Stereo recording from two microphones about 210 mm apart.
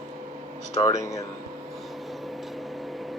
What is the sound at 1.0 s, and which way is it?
Speech, 15° left (ahead or behind).